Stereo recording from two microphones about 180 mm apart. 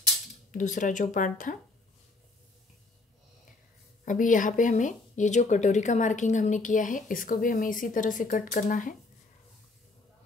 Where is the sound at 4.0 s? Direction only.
45° left (ahead or behind).